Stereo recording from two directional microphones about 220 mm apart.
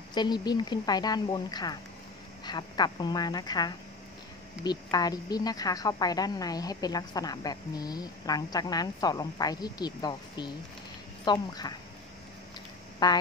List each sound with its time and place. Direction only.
0.1 s a woman's voice: 20° left (ahead or behind)
13.0 s speech: 20° left (ahead or behind)